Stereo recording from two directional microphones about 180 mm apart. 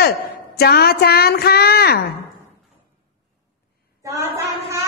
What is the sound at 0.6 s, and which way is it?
A woman's voice, 60° left (ahead or behind).